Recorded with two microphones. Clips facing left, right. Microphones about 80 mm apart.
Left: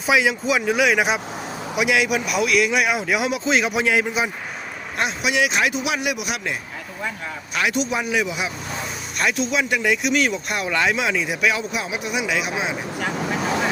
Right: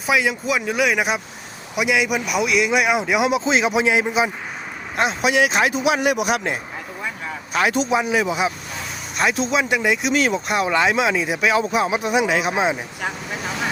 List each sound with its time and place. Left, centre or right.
0.1 s speech: centre
2.0 s speech: centre
4.9 s speech: right
7.9 s speech: right
10.1 s speech: right